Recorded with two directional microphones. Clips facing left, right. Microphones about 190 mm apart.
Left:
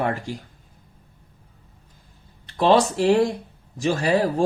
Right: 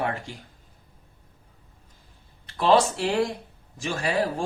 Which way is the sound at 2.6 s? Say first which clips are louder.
Left 3 dB; 35° left (ahead or behind).